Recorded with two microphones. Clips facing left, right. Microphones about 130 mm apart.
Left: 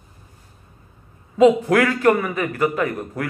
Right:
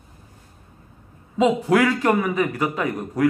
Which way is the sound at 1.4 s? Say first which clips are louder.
Left 3 dB; 15° right (ahead or behind).